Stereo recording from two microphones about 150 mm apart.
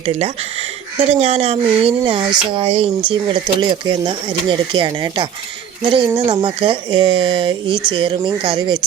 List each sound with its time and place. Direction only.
0.0 s speech: 45° right (ahead or behind); by 6.3 s 25° right (ahead or behind)
6.3 s speech: 35° right (ahead or behind)